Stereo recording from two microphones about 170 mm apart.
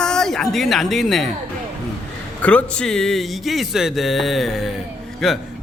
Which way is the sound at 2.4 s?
10° left (ahead or behind).